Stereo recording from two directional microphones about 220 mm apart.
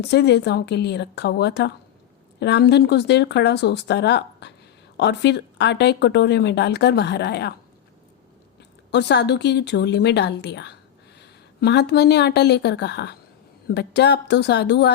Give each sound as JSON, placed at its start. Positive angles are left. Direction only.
{"t": 0.0, "sound": "speech", "side_deg": 50}
{"t": 8.9, "sound": "a woman's voice", "side_deg": 50}